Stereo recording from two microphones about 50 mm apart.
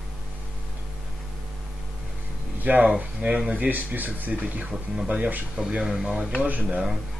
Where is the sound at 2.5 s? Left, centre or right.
Right.